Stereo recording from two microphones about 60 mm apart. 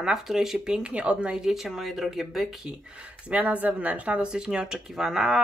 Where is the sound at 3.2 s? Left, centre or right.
Right.